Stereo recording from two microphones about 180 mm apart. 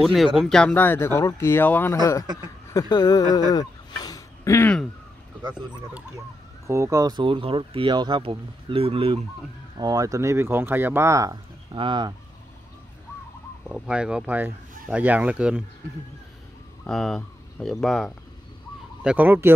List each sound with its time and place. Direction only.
0.0 s speech: centre (ahead or behind); by 3.4 s 20° left (ahead or behind)
3.5 s a sound: 20° left (ahead or behind)
6.7 s speech: 15° right (ahead or behind)
9.8 s speech: 20° right (ahead or behind)
13.7 s speech: 5° right (ahead or behind)
16.8 s speech: centre (ahead or behind)
19.0 s speech: 10° right (ahead or behind)